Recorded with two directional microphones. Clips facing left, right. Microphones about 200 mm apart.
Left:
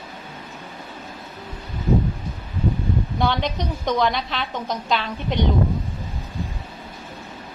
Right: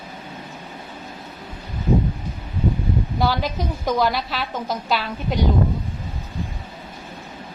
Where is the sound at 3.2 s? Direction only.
5° right (ahead or behind).